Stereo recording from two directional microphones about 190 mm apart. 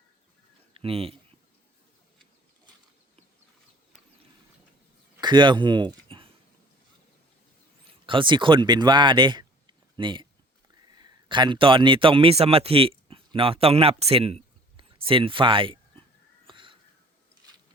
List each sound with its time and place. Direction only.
0.7 s speech: 30° right (ahead or behind)
5.2 s speech: 25° right (ahead or behind)
8.0 s a man's voice: 25° right (ahead or behind)
16.5 s crow: 25° right (ahead or behind)